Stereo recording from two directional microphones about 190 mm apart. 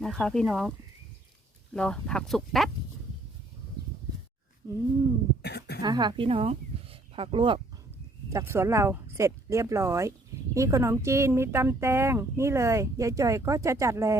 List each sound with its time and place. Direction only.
0.0 s speech: 5° left (ahead or behind)
1.7 s speech: 5° left (ahead or behind)
5.4 s cough: 60° left (ahead or behind)
5.8 s speech: 20° right (ahead or behind)
8.3 s speech: 15° right (ahead or behind)